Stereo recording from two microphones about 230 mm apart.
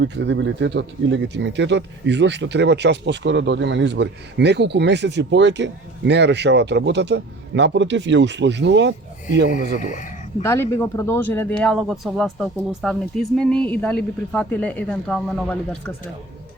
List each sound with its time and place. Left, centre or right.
0.0 s speech: right
9.6 s speech: left
10.4 s speech: centre